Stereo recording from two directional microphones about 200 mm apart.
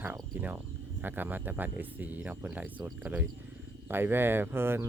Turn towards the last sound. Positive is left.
turn(degrees=-10)  # may be behind; listen again after turning